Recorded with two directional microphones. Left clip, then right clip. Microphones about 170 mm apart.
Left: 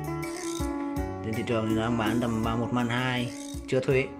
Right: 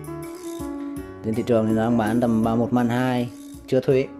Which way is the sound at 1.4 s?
20° right (ahead or behind).